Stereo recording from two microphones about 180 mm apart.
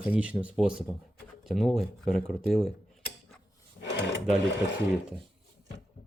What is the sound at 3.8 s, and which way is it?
Drawer open or close, 70° left (ahead or behind).